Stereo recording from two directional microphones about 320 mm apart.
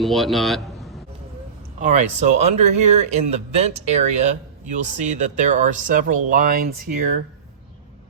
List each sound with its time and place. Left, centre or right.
0.0 s a man's voice: centre
1.8 s speech: right